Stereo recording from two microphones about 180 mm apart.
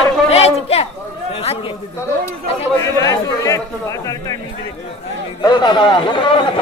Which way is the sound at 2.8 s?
20° left (ahead or behind).